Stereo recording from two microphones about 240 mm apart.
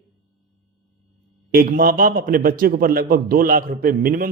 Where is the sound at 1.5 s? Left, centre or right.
Right.